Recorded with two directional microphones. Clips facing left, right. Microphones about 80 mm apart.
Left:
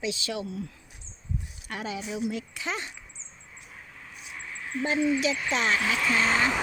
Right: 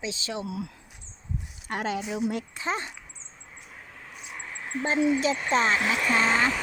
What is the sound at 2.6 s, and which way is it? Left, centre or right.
Speech, right.